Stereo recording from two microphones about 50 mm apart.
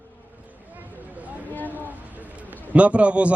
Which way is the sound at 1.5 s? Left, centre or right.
Left.